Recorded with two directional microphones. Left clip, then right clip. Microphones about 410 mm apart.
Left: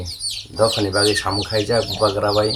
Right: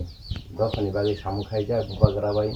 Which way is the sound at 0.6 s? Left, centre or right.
Right.